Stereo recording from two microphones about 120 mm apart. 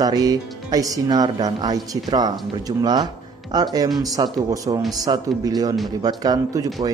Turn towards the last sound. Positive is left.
turn(degrees=-30)  # may be behind; listen again after turning